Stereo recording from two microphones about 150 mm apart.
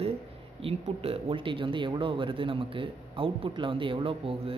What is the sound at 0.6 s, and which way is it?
Speech, 40° right (ahead or behind).